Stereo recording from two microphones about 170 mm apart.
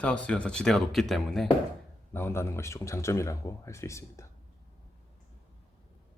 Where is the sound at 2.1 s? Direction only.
15° left (ahead or behind).